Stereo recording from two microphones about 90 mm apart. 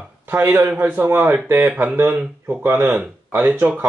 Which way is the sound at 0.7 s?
20° right (ahead or behind).